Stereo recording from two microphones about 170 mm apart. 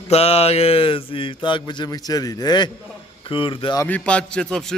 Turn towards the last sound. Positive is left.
turn(degrees=5)  # may be behind; listen again after turning